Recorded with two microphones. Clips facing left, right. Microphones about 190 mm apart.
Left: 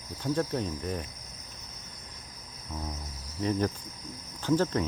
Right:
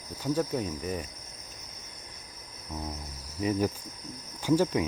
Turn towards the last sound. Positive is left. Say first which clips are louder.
# right 2 dB
turn(degrees=-10)  # may be behind; listen again after turning